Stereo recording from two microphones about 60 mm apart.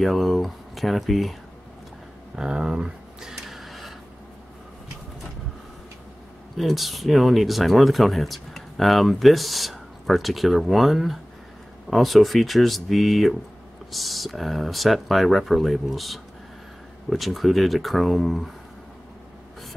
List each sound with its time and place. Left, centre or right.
0.0 s speech: centre
2.3 s a sound: centre
6.5 s speech: centre